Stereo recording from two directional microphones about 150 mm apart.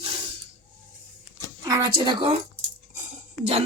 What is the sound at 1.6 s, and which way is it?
Speech, 25° right (ahead or behind).